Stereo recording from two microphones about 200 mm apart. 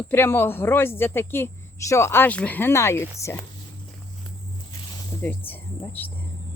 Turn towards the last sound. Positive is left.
turn(degrees=10)  # may be behind; listen again after turning